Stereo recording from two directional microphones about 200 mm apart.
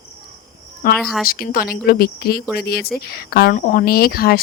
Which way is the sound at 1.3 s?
45° left (ahead or behind).